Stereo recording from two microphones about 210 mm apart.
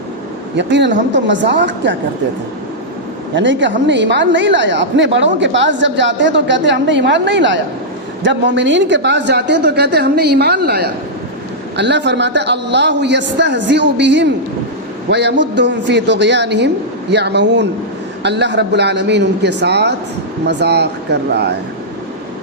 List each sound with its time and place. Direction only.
0.5 s a woman's voice: 55° right (ahead or behind)
3.3 s a woman's voice: 60° right (ahead or behind)